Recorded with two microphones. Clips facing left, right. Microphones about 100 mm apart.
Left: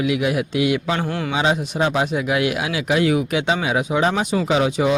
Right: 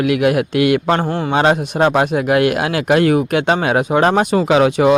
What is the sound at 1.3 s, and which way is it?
Speech, 55° right (ahead or behind).